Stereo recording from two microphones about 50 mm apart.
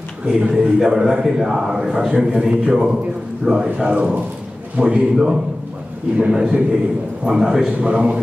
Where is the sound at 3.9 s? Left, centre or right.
Right.